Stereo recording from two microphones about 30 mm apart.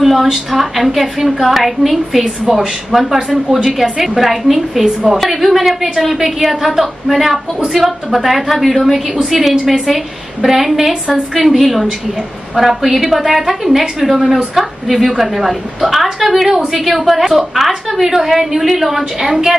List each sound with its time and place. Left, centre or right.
0.0 s a woman's voice: centre
6.1 s a woman's voice: centre
19.1 s a woman's voice: centre